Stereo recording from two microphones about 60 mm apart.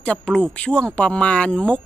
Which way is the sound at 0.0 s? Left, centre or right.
Centre.